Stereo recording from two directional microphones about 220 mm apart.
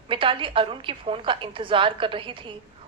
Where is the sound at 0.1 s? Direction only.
25° right (ahead or behind).